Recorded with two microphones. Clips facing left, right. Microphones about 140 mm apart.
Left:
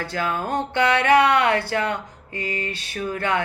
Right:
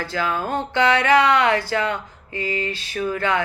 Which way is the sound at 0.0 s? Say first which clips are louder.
Right 1 dB; 55° left (ahead or behind).